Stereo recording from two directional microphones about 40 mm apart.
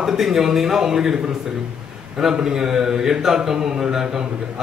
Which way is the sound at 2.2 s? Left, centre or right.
Centre.